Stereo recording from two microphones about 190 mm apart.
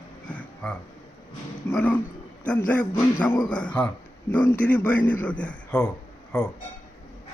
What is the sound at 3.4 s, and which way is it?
A man's voice, 5° left (ahead or behind).